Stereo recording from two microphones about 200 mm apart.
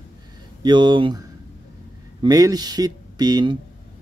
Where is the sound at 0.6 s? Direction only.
25° right (ahead or behind).